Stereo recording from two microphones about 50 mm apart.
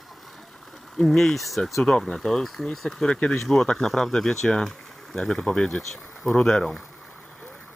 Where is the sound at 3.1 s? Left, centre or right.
Left.